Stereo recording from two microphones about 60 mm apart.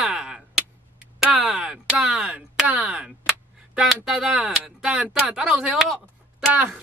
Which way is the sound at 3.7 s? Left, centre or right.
Centre.